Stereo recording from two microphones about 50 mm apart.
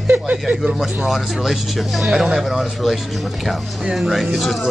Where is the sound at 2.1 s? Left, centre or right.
Centre.